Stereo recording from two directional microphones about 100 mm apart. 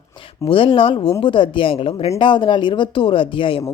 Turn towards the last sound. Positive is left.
turn(degrees=60)  # may be behind; listen again after turning